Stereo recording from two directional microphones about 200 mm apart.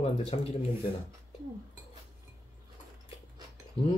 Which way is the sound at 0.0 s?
30° left (ahead or behind).